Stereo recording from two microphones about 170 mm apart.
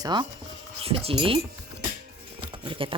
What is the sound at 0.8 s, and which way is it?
Speech, 35° right (ahead or behind).